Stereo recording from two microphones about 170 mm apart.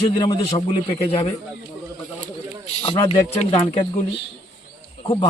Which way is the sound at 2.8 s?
30° left (ahead or behind).